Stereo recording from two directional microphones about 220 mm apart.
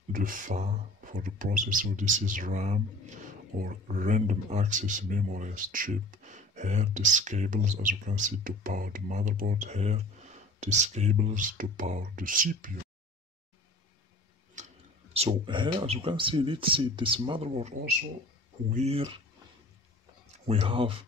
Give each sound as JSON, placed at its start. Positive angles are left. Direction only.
{"t": 0.1, "sound": "a man's voice", "side_deg": -40}
{"t": 15.1, "sound": "speech", "side_deg": -25}
{"t": 18.8, "sound": "speech", "side_deg": -25}
{"t": 20.4, "sound": "speech", "side_deg": -25}